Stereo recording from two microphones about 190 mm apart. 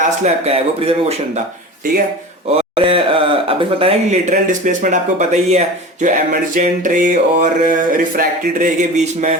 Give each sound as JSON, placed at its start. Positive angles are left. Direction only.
{"t": 0.4, "sound": "speech", "side_deg": -30}
{"t": 2.5, "sound": "speech", "side_deg": -30}